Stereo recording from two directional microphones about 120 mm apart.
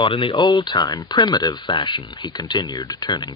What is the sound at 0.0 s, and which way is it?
Speech, 45° left (ahead or behind).